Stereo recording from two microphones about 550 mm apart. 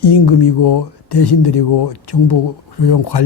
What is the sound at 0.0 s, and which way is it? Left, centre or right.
Speech, left.